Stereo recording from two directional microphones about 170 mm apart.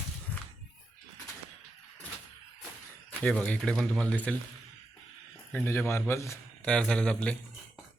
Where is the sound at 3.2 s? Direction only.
5° left (ahead or behind).